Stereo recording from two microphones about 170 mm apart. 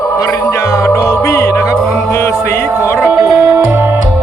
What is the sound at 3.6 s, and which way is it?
Music, 15° right (ahead or behind).